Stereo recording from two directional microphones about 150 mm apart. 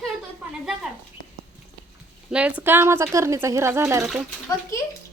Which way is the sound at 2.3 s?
10° right (ahead or behind).